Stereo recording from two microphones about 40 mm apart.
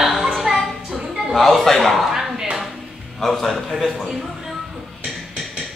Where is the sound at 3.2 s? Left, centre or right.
Centre.